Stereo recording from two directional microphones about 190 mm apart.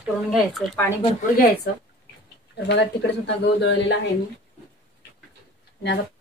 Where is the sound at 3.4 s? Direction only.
65° left (ahead or behind).